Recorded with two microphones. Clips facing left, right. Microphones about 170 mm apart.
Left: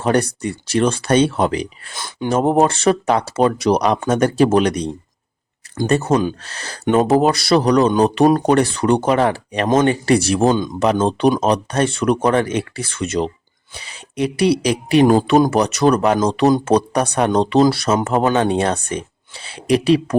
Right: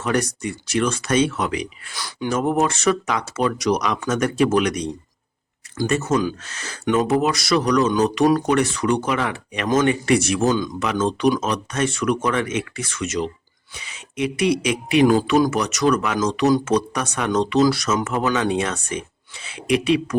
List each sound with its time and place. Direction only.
0.0 s speech: 30° left (ahead or behind)
5.9 s speech: 30° left (ahead or behind)